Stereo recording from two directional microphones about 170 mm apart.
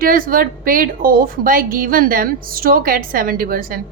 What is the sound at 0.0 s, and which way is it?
A woman's voice, 55° right (ahead or behind).